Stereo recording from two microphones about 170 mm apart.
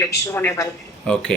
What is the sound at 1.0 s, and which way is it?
Speech, 5° left (ahead or behind).